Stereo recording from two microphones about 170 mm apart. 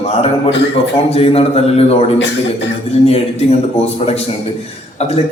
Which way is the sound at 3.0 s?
40° left (ahead or behind).